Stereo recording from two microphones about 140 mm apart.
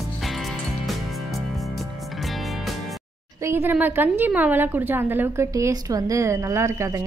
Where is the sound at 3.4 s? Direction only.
15° right (ahead or behind).